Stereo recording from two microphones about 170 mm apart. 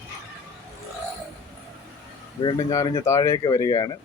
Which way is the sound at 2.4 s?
20° left (ahead or behind).